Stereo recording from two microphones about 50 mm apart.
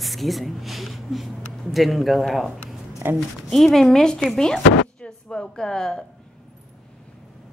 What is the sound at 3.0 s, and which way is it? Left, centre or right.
Speech, right.